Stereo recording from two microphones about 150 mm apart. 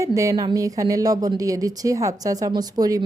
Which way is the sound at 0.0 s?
20° right (ahead or behind).